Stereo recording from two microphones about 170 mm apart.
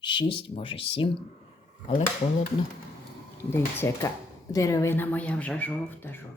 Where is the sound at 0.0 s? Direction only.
30° left (ahead or behind).